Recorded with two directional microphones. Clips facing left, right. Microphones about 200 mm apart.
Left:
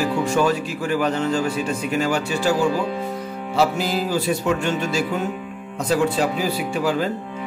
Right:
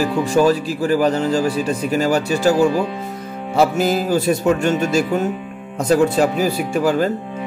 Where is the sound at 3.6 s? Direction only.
45° right (ahead or behind).